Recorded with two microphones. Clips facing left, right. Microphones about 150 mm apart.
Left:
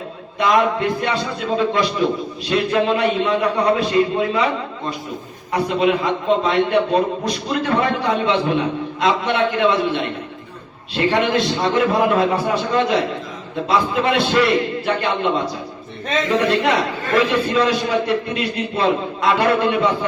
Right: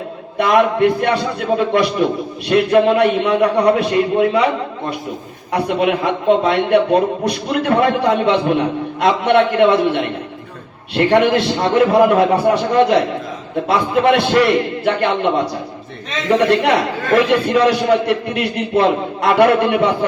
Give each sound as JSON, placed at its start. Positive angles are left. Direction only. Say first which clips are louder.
{"t": 0.3, "sound": "a man's voice", "louder": "right 3 dB", "side_deg": -60}
{"t": 5.5, "sound": "a man's voice", "louder": "right 1 dB", "side_deg": -60}